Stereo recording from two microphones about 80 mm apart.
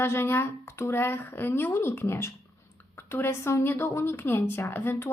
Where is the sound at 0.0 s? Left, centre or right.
Left.